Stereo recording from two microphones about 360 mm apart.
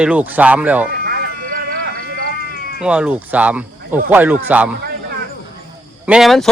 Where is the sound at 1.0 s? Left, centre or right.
Right.